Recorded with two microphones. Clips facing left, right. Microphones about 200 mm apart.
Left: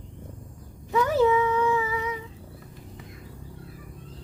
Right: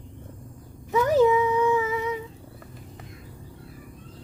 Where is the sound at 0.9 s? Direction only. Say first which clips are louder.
Right 2 dB; 15° right (ahead or behind).